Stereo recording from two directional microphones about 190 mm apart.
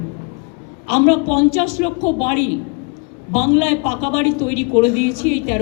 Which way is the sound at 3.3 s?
35° left (ahead or behind).